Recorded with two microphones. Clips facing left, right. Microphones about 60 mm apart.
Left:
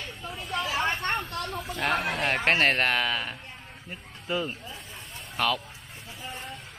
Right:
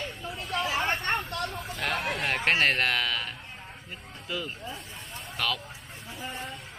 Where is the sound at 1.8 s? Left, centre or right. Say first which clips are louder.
Left 3 dB; centre.